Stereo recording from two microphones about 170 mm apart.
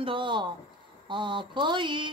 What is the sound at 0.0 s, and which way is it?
A woman's voice, 30° right (ahead or behind).